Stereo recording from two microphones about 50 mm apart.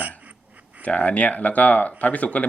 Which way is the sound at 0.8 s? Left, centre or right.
Left.